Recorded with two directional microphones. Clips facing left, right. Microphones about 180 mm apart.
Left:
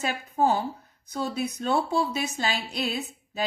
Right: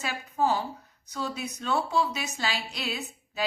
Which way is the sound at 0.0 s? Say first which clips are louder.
Left 3 dB; 50° left (ahead or behind).